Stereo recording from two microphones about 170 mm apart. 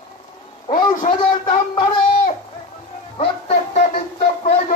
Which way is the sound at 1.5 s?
35° left (ahead or behind).